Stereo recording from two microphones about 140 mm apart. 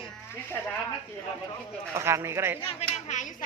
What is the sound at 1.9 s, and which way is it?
Speech, 20° right (ahead or behind).